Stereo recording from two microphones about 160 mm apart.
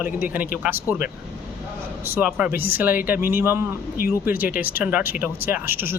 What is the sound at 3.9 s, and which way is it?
Speech, 60° left (ahead or behind).